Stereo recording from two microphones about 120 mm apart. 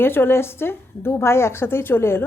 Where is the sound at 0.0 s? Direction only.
20° left (ahead or behind).